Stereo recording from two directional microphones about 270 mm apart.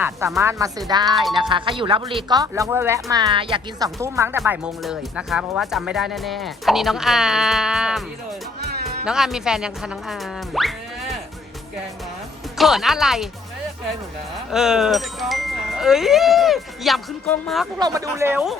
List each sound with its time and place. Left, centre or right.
0.0 s speech: centre
1.1 s speech: centre
1.4 s speech: centre
8.6 s music: right
9.0 s speech: centre
12.5 s speech: centre
14.5 s speech: centre
17.7 s speech: centre